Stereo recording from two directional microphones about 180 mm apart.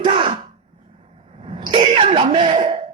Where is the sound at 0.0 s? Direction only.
30° right (ahead or behind).